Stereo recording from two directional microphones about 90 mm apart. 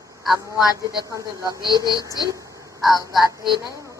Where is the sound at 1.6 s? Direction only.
55° right (ahead or behind).